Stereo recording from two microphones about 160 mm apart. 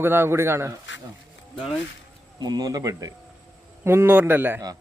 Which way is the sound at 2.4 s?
25° right (ahead or behind).